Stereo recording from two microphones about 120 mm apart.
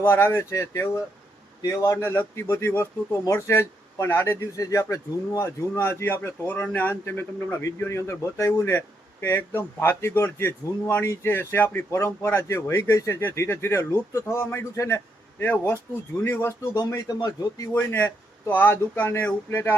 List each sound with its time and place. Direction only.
0.0 s speech: 20° left (ahead or behind)
17.7 s speech: 15° left (ahead or behind)